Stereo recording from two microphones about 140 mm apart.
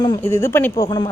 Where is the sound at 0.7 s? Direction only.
30° left (ahead or behind).